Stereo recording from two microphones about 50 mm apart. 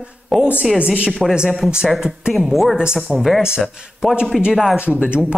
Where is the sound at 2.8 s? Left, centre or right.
Centre.